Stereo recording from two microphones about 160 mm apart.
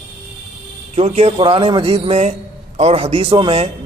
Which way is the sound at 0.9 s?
40° right (ahead or behind).